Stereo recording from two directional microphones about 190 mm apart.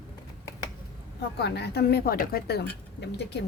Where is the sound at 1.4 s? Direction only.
60° left (ahead or behind).